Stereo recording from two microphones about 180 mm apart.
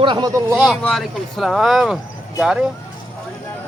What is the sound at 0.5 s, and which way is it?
Speech, centre (ahead or behind).